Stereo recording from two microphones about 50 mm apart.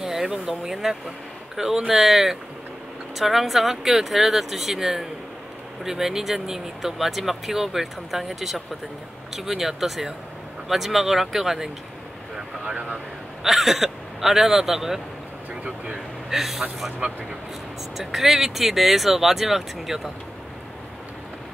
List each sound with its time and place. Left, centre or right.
0.0 s speech: centre
12.6 s vehicle: centre
13.5 s speech: centre
16.3 s speech: centre
17.9 s speech: centre